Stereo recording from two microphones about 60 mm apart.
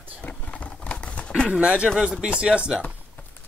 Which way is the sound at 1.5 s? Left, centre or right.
Right.